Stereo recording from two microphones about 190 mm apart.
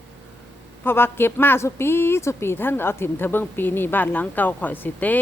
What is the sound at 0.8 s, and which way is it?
A woman's voice, 10° left (ahead or behind).